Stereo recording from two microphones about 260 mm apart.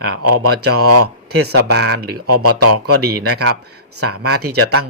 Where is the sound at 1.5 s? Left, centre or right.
Right.